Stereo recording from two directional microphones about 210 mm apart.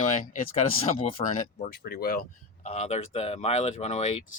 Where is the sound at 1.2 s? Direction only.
25° left (ahead or behind).